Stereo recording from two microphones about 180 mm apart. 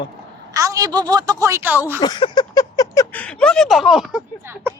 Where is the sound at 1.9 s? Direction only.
25° left (ahead or behind).